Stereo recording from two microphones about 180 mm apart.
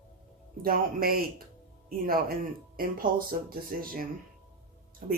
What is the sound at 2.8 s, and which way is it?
Speech, 55° right (ahead or behind).